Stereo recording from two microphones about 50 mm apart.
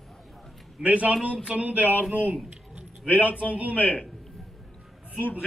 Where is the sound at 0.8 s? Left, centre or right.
Right.